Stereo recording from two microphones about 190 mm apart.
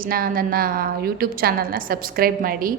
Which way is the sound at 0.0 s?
50° right (ahead or behind).